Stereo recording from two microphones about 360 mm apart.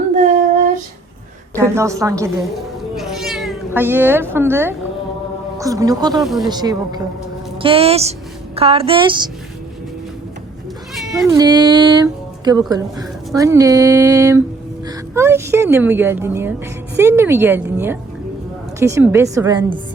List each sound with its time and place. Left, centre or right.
1.5 s speech: centre
2.9 s cat: centre
5.5 s speech: centre
6.2 s speech: centre
6.5 s speech: centre
10.9 s speech: centre